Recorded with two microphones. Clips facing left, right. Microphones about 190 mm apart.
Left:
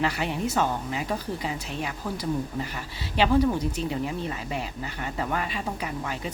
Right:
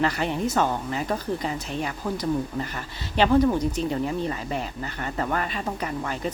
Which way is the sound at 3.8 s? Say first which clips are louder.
Right 3 dB; 40° right (ahead or behind).